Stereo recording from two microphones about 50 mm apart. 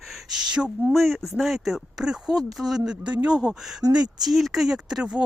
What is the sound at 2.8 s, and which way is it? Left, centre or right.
Speech, right.